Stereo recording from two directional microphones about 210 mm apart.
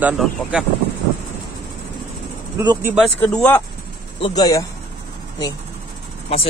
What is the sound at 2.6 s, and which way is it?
Speech, 20° right (ahead or behind).